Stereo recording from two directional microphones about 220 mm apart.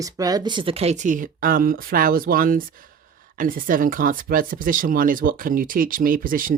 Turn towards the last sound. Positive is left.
turn(degrees=-40)  # may be behind; listen again after turning